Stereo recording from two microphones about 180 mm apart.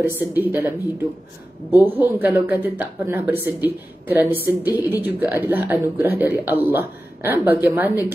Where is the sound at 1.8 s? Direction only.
10° right (ahead or behind).